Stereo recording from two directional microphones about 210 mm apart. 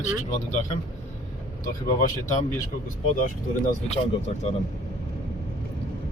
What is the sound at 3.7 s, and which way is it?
Speech, 30° left (ahead or behind).